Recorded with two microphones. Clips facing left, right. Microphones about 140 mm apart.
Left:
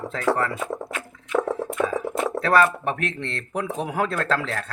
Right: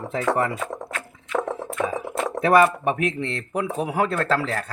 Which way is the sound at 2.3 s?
20° right (ahead or behind).